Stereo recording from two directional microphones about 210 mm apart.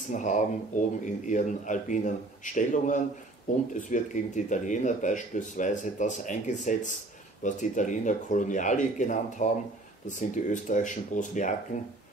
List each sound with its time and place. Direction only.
0.1 s speech: 35° left (ahead or behind)